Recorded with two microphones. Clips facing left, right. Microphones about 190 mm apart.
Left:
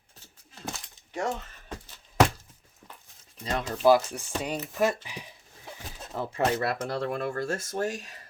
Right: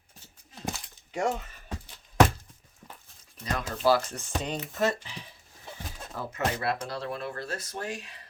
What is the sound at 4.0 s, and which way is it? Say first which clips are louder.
Speech: left 2 dB; 10° left (ahead or behind).